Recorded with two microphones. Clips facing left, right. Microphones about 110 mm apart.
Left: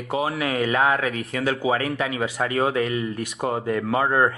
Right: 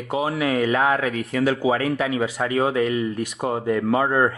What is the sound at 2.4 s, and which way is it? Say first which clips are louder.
Speech: even; centre (ahead or behind).